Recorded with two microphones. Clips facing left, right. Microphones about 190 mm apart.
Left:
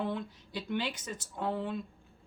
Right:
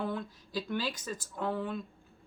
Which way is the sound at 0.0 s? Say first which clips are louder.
Even; 20° left (ahead or behind).